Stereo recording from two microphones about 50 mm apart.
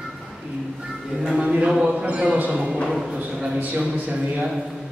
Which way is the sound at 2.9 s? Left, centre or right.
Centre.